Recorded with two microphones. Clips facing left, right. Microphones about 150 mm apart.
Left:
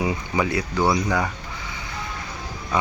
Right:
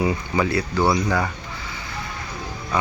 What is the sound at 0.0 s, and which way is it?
Speech, 15° left (ahead or behind).